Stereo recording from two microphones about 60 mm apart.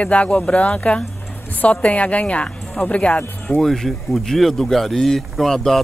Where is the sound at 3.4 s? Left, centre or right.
Centre.